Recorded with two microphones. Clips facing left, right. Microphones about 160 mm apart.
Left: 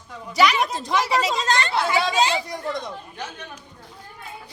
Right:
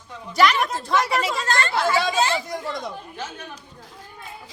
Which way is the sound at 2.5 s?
Centre (ahead or behind).